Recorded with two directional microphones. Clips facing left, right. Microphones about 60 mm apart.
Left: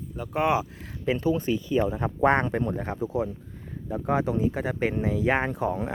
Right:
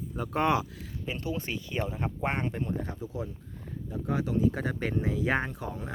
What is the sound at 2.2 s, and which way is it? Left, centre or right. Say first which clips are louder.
Speech: left 11 dB; left.